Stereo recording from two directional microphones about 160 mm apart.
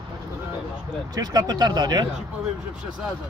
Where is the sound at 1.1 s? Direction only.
25° right (ahead or behind).